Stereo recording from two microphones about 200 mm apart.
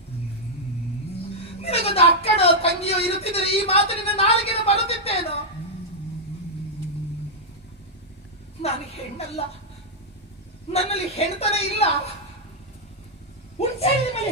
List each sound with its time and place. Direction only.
1.6 s a woman's voice: 30° left (ahead or behind)
9.4 s a man's voice: 30° left (ahead or behind)
10.7 s a man's voice: 30° left (ahead or behind)
13.6 s a man's voice: 30° left (ahead or behind)